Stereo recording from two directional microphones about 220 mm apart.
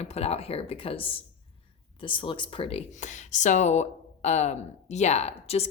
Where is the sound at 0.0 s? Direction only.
30° left (ahead or behind).